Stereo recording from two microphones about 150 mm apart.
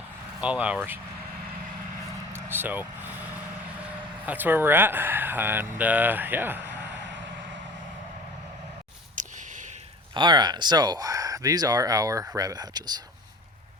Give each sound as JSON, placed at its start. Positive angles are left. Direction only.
{"t": 0.4, "sound": "speech", "side_deg": -10}
{"t": 2.3, "sound": "vehicle", "side_deg": -15}
{"t": 4.3, "sound": "speech", "side_deg": -15}
{"t": 9.1, "sound": "a sound", "side_deg": -55}
{"t": 10.2, "sound": "speech", "side_deg": -30}